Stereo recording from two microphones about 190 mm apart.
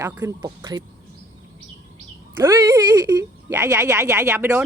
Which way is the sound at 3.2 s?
15° right (ahead or behind).